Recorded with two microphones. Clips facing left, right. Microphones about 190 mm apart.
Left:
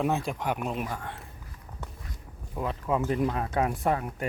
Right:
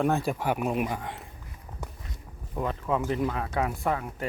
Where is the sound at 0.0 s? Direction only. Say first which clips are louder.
Right 2 dB; centre (ahead or behind); by 1.2 s 15° right (ahead or behind).